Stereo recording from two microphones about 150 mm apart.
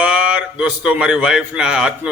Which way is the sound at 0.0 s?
5° right (ahead or behind).